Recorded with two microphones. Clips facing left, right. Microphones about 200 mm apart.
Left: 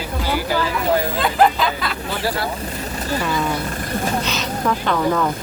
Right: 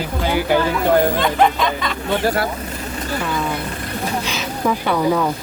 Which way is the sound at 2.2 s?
50° right (ahead or behind).